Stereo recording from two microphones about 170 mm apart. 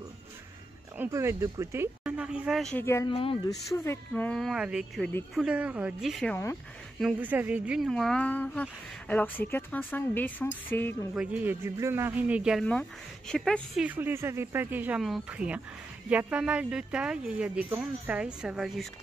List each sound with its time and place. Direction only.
0.9 s speech: 15° right (ahead or behind)
2.8 s speech: 15° left (ahead or behind)
3.1 s speech: 30° left (ahead or behind)
3.7 s speech: 15° left (ahead or behind)
4.1 s speech: 5° left (ahead or behind)
11.1 s speech: 10° right (ahead or behind)
13.8 s speech: 10° right (ahead or behind)